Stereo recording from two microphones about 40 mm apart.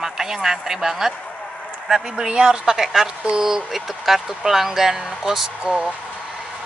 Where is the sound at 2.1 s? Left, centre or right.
Right.